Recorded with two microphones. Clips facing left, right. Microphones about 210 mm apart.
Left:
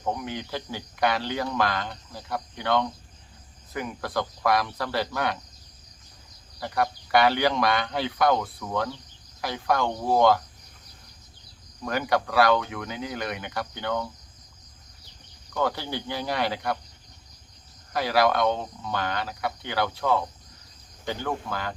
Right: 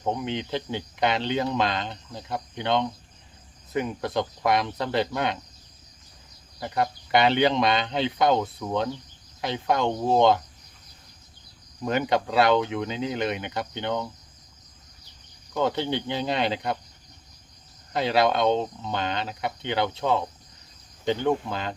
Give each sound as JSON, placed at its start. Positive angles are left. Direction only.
{"t": 0.0, "sound": "speech", "side_deg": -20}
{"t": 6.6, "sound": "speech", "side_deg": -20}
{"t": 11.8, "sound": "speech", "side_deg": -20}
{"t": 15.5, "sound": "speech", "side_deg": -20}
{"t": 17.9, "sound": "speech", "side_deg": -25}